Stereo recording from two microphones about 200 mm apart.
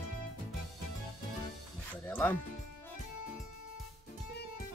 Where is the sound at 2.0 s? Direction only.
10° left (ahead or behind).